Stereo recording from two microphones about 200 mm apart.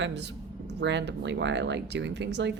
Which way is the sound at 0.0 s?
60° right (ahead or behind).